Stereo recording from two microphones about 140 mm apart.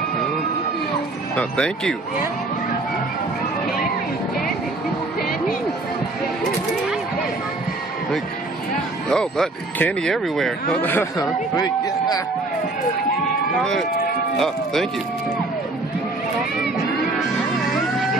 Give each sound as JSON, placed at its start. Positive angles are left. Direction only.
{"t": 1.3, "sound": "speech", "side_deg": 5}
{"t": 9.1, "sound": "speech", "side_deg": 5}
{"t": 10.8, "sound": "speech", "side_deg": 15}
{"t": 11.5, "sound": "a man's voice", "side_deg": 30}
{"t": 13.6, "sound": "speech", "side_deg": 5}
{"t": 17.6, "sound": "vehicle", "side_deg": 0}